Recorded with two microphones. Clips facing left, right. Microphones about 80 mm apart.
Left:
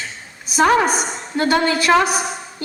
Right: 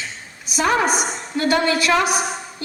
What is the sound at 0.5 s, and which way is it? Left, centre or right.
Speech, left.